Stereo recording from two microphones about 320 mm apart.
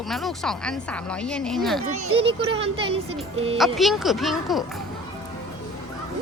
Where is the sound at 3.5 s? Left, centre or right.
Centre.